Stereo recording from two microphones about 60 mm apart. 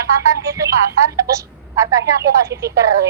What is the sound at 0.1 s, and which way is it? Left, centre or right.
A woman's voice, right.